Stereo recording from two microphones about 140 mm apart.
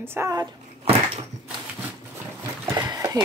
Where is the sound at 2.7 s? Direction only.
25° right (ahead or behind).